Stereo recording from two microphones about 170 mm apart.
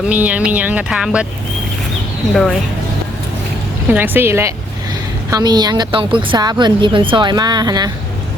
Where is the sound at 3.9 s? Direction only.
10° right (ahead or behind).